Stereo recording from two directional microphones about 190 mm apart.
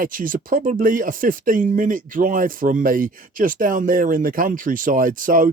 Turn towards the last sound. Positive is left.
turn(degrees=-45)  # may be behind; listen again after turning